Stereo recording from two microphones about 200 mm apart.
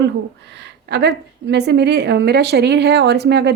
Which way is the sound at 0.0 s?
55° right (ahead or behind).